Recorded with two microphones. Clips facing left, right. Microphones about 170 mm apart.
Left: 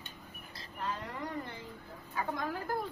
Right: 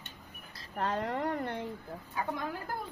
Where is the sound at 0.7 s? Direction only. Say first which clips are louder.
Right 7 dB; 75° right (ahead or behind).